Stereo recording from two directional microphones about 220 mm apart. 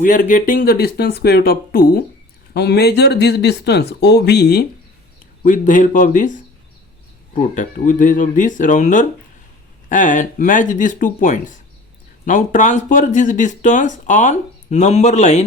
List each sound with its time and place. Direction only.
0.0 s speech: 35° left (ahead or behind)
5.4 s speech: 35° left (ahead or behind)